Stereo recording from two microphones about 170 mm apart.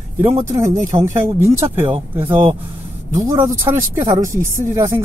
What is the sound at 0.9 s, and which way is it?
Speech, 15° right (ahead or behind).